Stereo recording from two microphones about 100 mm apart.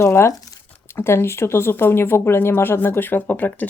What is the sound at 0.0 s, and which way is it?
Speech, 25° left (ahead or behind).